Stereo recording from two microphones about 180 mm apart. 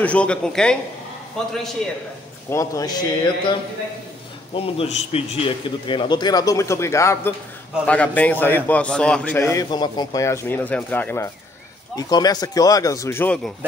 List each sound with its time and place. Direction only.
0.0 s speech: 5° left (ahead or behind)
2.5 s a man's voice: 15° left (ahead or behind)
4.6 s a man's voice: 30° left (ahead or behind); by 11.2 s 10° left (ahead or behind)
11.9 s a man's voice: 20° left (ahead or behind)